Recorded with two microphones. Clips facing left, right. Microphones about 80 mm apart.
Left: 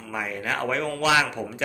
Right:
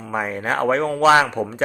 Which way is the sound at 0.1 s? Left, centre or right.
Right.